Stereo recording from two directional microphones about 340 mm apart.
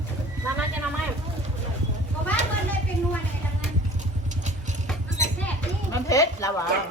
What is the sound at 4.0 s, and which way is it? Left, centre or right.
Vehicle, right.